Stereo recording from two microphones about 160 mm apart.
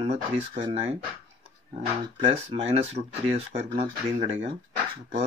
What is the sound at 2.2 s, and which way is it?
Speech, 35° right (ahead or behind).